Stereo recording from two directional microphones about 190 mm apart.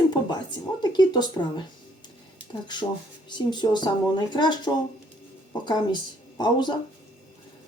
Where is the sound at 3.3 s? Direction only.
25° left (ahead or behind).